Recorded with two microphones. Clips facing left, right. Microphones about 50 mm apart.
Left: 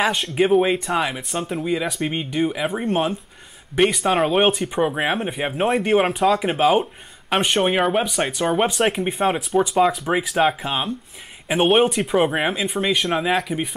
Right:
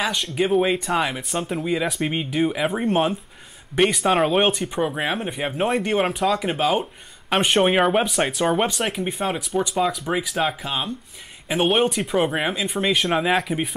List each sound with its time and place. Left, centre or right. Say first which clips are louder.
0.0 s speech: left 4 dB; left
0.4 s speech: left 3 dB; centre
6.8 s speech: left 4 dB; centre
8.6 s speech: left 4 dB; centre